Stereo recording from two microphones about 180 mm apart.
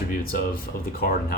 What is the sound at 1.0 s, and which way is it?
Speech, 55° left (ahead or behind).